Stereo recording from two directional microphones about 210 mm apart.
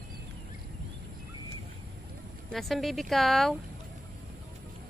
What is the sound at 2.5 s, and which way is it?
Speech, centre (ahead or behind).